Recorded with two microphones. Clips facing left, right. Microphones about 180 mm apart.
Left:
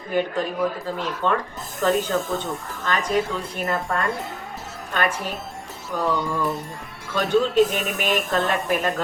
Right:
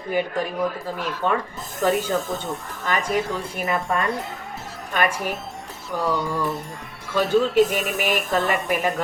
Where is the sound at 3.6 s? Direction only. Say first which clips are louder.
Right 1 dB; 15° right (ahead or behind).